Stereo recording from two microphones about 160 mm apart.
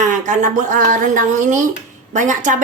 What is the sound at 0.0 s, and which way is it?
A woman's voice, 50° right (ahead or behind).